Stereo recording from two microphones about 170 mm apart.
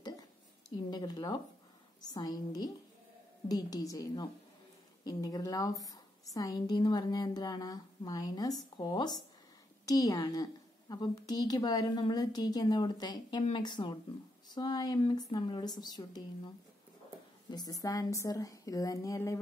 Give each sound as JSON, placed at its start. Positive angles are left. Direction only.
{"t": 0.8, "sound": "a woman's voice", "side_deg": 25}
{"t": 17.5, "sound": "a woman's voice", "side_deg": 20}